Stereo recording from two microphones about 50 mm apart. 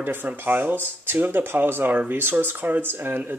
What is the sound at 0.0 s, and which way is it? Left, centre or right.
Speech, right.